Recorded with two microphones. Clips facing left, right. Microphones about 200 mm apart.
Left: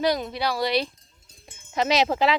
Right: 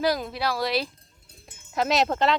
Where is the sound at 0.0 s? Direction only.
Centre (ahead or behind).